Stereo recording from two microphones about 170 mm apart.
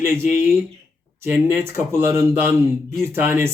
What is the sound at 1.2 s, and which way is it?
Speech, 15° right (ahead or behind).